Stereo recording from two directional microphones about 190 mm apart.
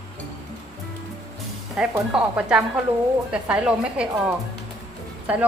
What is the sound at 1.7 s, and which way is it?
A woman's voice, 5° right (ahead or behind).